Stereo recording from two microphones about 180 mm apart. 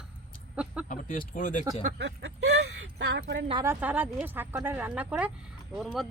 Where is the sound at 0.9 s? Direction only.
50° left (ahead or behind).